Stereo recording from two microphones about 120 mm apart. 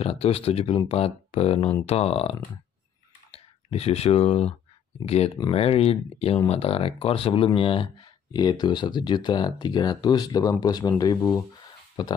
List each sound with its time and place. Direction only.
0.0 s speech: 55° left (ahead or behind); by 12.1 s 40° left (ahead or behind)